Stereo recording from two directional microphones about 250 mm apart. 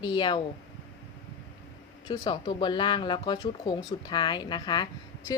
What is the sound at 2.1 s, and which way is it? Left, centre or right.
A woman's voice, centre.